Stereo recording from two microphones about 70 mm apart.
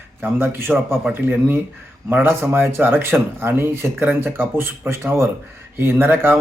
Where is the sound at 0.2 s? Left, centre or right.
Right.